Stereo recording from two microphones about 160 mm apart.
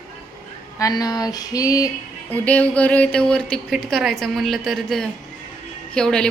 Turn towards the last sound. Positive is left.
turn(degrees=5)  # may be behind; listen again after turning